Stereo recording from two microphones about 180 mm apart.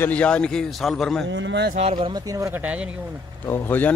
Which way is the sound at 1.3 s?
80° right.